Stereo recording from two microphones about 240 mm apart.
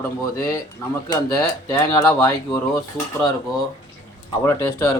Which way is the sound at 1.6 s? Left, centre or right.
Centre.